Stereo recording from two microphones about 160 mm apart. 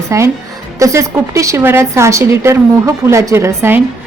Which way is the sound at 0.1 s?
20° right (ahead or behind).